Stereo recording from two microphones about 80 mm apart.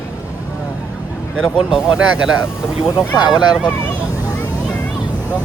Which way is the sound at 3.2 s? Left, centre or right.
Left.